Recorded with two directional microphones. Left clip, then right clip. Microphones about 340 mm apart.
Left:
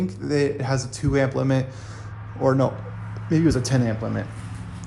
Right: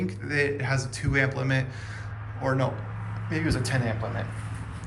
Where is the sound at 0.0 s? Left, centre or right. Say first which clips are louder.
Left 4 dB; centre.